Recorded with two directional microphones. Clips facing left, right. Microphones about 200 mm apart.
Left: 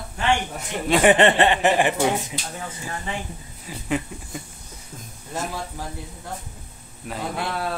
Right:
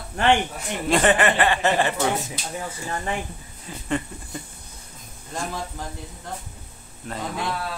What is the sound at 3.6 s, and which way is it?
A man's voice, 5° left (ahead or behind).